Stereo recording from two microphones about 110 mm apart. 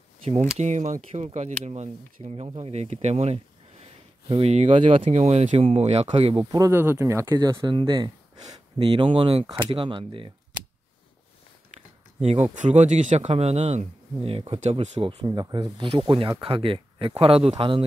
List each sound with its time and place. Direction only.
0.2 s speech: 75° right (ahead or behind)
0.6 s speech: 90° right
2.4 s speech: 65° right (ahead or behind)
4.3 s speech: 65° right (ahead or behind)
6.7 s speech: 20° right (ahead or behind)
7.3 s speech: 40° right (ahead or behind)
8.7 s speech: 55° right (ahead or behind)
12.2 s speech: 90° right
15.0 s speech: 55° right (ahead or behind)
15.8 s speech: 50° right (ahead or behind)